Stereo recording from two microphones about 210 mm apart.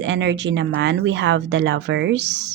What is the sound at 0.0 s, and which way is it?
A woman's voice, 60° right (ahead or behind).